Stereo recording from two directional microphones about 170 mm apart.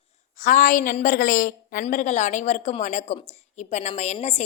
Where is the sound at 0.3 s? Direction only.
50° left (ahead or behind).